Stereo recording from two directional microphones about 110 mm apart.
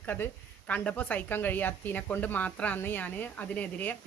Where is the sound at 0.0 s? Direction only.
15° left (ahead or behind).